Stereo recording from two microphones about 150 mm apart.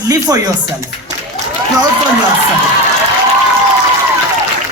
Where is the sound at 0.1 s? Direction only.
25° right (ahead or behind).